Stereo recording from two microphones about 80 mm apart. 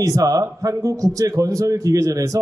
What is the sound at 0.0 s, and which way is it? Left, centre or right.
A man's voice, right.